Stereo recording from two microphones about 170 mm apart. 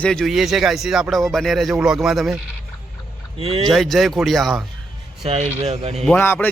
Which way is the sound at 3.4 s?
35° right (ahead or behind).